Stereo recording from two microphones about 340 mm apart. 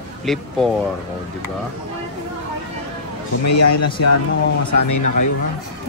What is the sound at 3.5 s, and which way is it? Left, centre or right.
A man's voice, left.